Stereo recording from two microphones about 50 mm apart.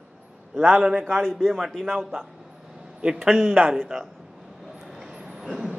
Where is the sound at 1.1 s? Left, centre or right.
Centre.